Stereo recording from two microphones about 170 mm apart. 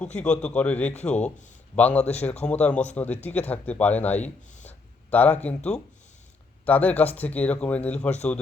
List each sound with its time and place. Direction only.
0.2 s speech: 5° left (ahead or behind)
2.0 s speech: 40° left (ahead or behind)
2.4 s speech: 5° left (ahead or behind)